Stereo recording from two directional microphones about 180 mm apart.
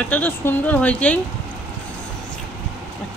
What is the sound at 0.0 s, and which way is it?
Speech, 10° left (ahead or behind).